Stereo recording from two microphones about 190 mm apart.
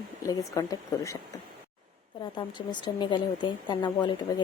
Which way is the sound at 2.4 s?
25° left (ahead or behind).